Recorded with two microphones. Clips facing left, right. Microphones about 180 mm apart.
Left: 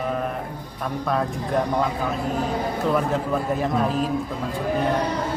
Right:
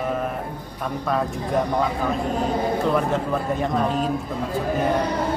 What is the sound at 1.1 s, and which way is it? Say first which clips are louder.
A man's voice: right 1 dB; centre (ahead or behind).